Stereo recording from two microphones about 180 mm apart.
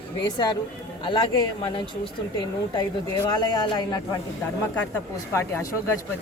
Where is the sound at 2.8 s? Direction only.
20° left (ahead or behind).